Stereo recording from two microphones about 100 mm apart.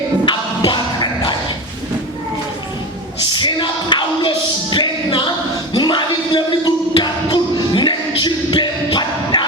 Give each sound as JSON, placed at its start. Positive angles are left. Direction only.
{"t": 0.3, "sound": "music", "side_deg": 50}
{"t": 3.3, "sound": "music", "side_deg": 50}